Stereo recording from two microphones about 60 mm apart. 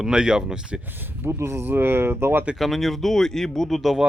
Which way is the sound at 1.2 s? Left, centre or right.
Right.